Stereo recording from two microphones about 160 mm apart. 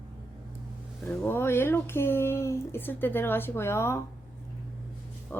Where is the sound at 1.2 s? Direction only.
15° left (ahead or behind).